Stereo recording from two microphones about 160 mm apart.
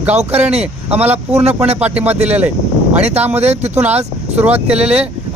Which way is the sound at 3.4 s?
40° right (ahead or behind).